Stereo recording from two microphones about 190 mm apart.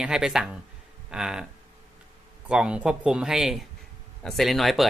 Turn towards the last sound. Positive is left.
turn(degrees=0)  # may be behind; listen again after turning